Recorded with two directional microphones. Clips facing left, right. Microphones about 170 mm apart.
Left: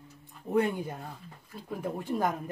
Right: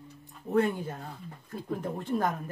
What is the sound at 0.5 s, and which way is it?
Speech, 15° left (ahead or behind).